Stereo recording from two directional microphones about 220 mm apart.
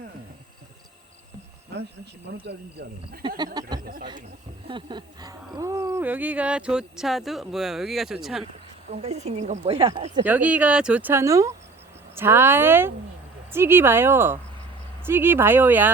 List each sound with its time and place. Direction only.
3.2 s a woman's voice: 20° right (ahead or behind)
3.8 s speech: 40° right (ahead or behind)
4.7 s speech: 20° right (ahead or behind); by 8.4 s centre (ahead or behind)
8.9 s a woman's voice: 30° right (ahead or behind)
10.2 s speech: 10° right (ahead or behind)